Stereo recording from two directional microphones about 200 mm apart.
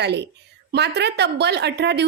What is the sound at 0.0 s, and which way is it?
A woman's voice, 60° right (ahead or behind).